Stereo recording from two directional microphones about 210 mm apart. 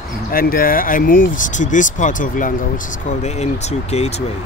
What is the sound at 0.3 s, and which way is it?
Speech, 45° left (ahead or behind).